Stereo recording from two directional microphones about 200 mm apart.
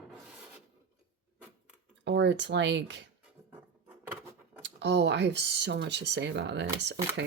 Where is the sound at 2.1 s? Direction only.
60° right (ahead or behind).